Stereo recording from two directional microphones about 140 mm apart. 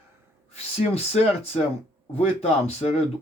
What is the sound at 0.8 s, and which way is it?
Speech, 50° left (ahead or behind).